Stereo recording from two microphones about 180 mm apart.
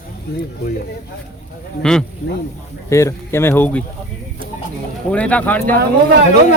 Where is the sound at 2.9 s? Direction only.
15° left (ahead or behind).